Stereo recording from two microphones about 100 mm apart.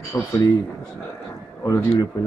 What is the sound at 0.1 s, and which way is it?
Speech, 20° left (ahead or behind).